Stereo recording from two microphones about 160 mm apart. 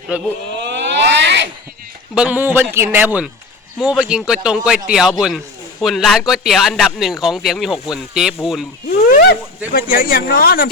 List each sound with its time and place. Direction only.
0.1 s speech: 10° right (ahead or behind)
0.5 s a sound: 90° right
2.1 s speech: 10° right (ahead or behind)
8.9 s speech: 65° left (ahead or behind)